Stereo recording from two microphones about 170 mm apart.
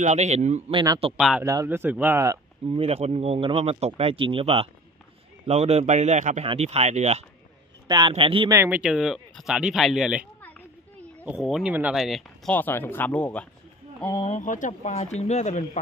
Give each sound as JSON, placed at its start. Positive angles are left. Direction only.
{"t": 0.0, "sound": "speech", "side_deg": -40}
{"t": 0.7, "sound": "speech", "side_deg": -30}
{"t": 1.1, "sound": "speech", "side_deg": -5}
{"t": 1.4, "sound": "a man's voice", "side_deg": -20}
{"t": 2.7, "sound": "speech", "side_deg": -35}
{"t": 8.5, "sound": "speech", "side_deg": -10}
{"t": 11.2, "sound": "speech", "side_deg": -5}
{"t": 14.1, "sound": "speech", "side_deg": 35}
{"t": 14.4, "sound": "speech", "side_deg": 50}